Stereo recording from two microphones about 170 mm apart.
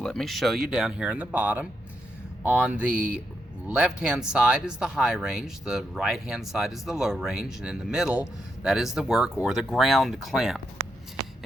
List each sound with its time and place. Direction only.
0.0 s speech: 5° left (ahead or behind)